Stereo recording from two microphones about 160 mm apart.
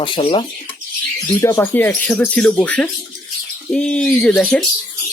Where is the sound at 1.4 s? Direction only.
15° left (ahead or behind).